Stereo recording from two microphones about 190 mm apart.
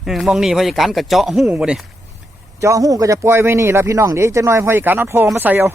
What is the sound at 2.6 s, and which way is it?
A man's voice, 15° right (ahead or behind).